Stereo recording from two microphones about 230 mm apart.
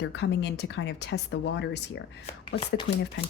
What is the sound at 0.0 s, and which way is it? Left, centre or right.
Speech, left.